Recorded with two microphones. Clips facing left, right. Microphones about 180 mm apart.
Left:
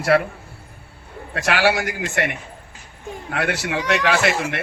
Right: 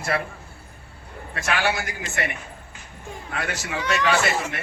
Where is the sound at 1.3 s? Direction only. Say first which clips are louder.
Left 5 dB; 70° left (ahead or behind).